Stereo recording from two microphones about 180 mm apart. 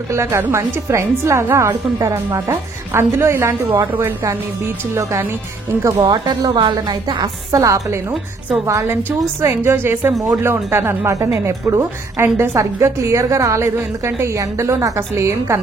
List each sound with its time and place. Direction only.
0.1 s a woman's voice: 15° right (ahead or behind)
5.8 s a woman's voice: 20° right (ahead or behind)